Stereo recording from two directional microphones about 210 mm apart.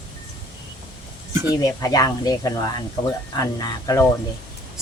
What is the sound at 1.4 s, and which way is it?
Speech, 15° left (ahead or behind).